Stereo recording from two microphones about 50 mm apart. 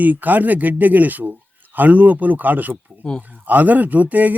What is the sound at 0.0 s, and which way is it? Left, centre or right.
Speech, right.